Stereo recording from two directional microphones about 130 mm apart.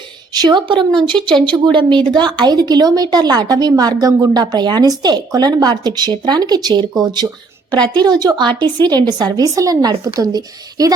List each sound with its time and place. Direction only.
0.3 s speech: 35° right (ahead or behind)